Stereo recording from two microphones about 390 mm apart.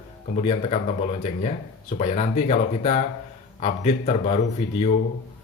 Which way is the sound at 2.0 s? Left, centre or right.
Centre.